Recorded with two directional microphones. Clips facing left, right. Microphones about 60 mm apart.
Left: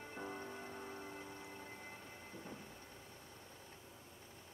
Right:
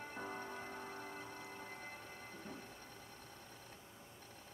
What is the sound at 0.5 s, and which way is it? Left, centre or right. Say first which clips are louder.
Music: right 1 dB; right.